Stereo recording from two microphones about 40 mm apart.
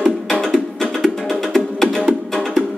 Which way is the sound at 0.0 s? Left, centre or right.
Centre.